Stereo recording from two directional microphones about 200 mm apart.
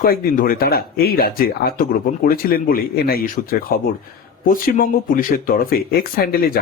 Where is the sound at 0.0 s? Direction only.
45° left (ahead or behind).